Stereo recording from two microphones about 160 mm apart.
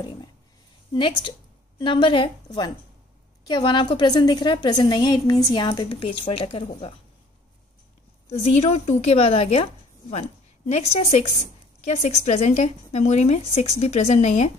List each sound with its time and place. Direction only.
0.9 s a woman's voice: 30° left (ahead or behind)
8.3 s a woman's voice: 40° left (ahead or behind)